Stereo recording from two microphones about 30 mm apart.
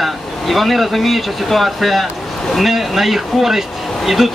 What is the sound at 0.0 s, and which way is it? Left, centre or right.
Speech, centre.